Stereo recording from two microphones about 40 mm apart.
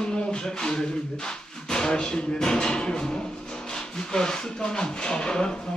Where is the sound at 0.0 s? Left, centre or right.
Left.